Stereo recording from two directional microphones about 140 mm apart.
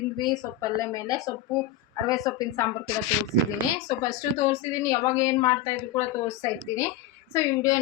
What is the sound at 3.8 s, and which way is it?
A woman's voice, 25° left (ahead or behind).